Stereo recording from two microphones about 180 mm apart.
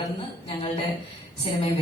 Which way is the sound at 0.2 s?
30° left (ahead or behind).